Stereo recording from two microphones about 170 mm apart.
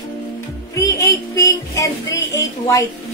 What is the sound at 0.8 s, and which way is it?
Music, 20° left (ahead or behind).